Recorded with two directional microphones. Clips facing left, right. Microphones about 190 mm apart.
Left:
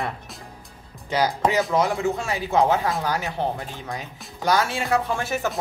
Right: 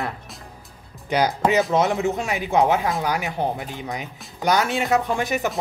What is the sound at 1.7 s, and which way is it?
Speech, 20° right (ahead or behind).